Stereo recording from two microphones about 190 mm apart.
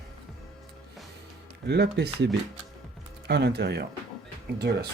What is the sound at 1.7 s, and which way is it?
Speech, 60° right (ahead or behind).